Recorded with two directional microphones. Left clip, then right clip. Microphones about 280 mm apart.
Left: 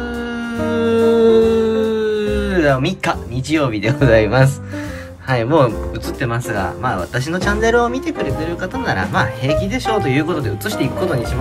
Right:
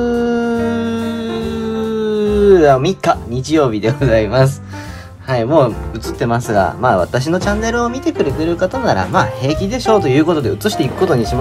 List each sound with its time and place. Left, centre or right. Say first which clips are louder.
0.0 s music: right 9 dB; centre
5.3 s speech: right 2 dB; centre